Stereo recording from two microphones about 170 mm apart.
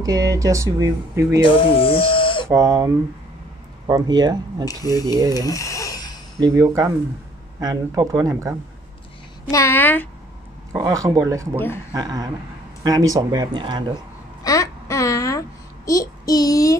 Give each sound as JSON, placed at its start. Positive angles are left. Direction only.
{"t": 0.0, "sound": "speech", "side_deg": -20}
{"t": 1.4, "sound": "speech", "side_deg": 30}
{"t": 2.5, "sound": "speech", "side_deg": -20}
{"t": 4.6, "sound": "speech", "side_deg": 20}
{"t": 5.3, "sound": "a sound", "side_deg": 20}
{"t": 6.4, "sound": "speech", "side_deg": -20}
{"t": 9.5, "sound": "a woman's voice", "side_deg": 15}
{"t": 10.7, "sound": "speech", "side_deg": -20}
{"t": 11.5, "sound": "a woman's voice", "side_deg": 10}
{"t": 11.9, "sound": "speech", "side_deg": -20}
{"t": 14.4, "sound": "babbling", "side_deg": 20}